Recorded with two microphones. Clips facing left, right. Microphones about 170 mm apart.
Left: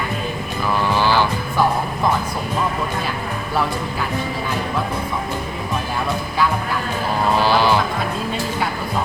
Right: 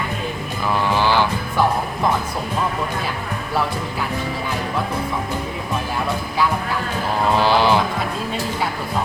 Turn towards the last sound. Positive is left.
turn(degrees=-20)  # may be behind; listen again after turning